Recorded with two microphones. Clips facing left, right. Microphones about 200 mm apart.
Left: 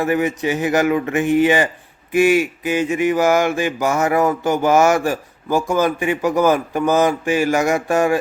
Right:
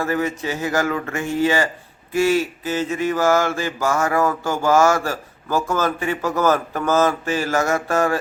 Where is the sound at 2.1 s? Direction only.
15° left (ahead or behind).